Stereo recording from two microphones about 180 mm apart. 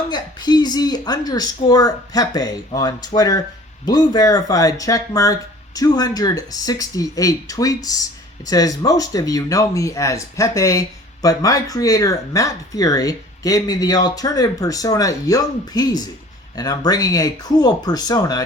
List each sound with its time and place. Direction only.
0.1 s speech: 20° left (ahead or behind)